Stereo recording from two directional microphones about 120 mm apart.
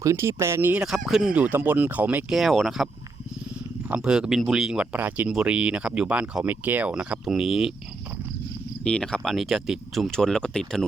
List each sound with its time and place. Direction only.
0.0 s speech: 25° right (ahead or behind)
0.7 s speech: 5° right (ahead or behind)
2.3 s speech: centre (ahead or behind)
8.8 s speech: 5° left (ahead or behind)